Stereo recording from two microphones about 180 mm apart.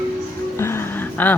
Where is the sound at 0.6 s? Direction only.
15° left (ahead or behind).